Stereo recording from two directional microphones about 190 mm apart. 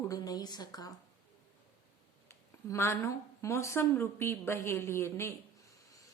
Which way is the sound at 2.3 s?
15° left (ahead or behind).